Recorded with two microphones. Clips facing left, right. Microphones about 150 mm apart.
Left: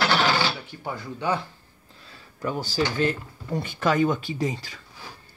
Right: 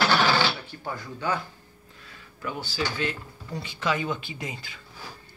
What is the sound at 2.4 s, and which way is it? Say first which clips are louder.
Speech: left 5 dB; 40° left (ahead or behind).